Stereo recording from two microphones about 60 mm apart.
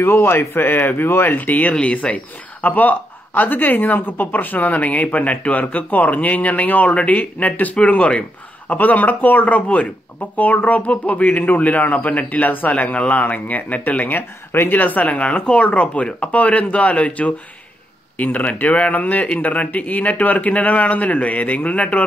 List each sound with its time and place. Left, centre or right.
0.0 s speech: left